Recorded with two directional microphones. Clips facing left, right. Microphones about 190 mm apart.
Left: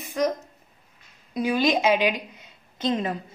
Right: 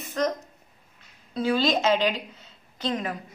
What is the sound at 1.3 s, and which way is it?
A woman's voice, 15° left (ahead or behind).